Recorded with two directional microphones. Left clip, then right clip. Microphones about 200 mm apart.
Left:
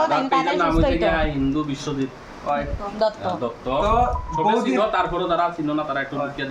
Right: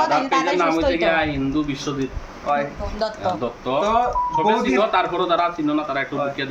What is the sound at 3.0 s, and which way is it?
Speech, 15° left (ahead or behind).